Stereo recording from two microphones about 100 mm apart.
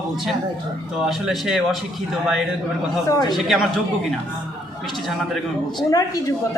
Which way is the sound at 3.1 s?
40° left (ahead or behind).